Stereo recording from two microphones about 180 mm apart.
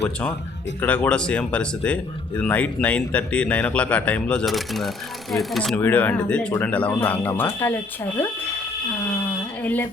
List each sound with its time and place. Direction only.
0.8 s speech: 10° left (ahead or behind)